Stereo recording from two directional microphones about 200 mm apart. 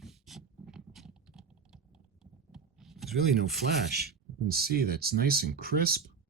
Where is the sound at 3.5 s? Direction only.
55° right (ahead or behind).